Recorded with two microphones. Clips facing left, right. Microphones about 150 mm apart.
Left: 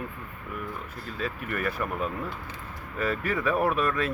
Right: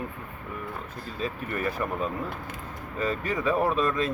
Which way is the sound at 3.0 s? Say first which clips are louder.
Even; 20° right (ahead or behind).